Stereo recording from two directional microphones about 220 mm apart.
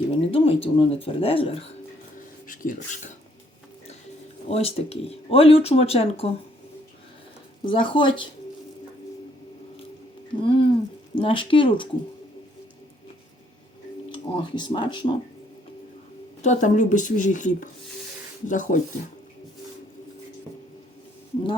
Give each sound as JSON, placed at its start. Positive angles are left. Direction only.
{"t": 0.2, "sound": "speech", "side_deg": 25}
{"t": 2.1, "sound": "music", "side_deg": 35}
{"t": 4.4, "sound": "speech", "side_deg": 30}
{"t": 7.6, "sound": "speech", "side_deg": 20}
{"t": 10.4, "sound": "speech", "side_deg": 25}
{"t": 14.1, "sound": "speech", "side_deg": 20}
{"t": 16.4, "sound": "speech", "side_deg": 35}